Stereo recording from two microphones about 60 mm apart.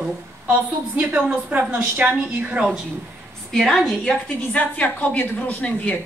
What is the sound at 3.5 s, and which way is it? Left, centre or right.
Speech, centre.